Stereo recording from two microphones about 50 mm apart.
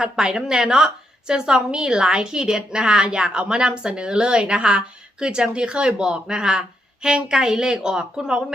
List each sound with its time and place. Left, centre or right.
0.0 s a woman's voice: centre